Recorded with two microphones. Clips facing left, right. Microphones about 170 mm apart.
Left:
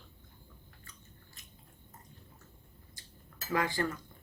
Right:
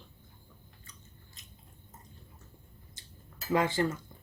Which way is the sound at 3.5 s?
25° right (ahead or behind).